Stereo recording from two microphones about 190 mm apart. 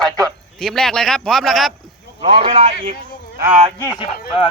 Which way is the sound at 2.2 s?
25° right (ahead or behind).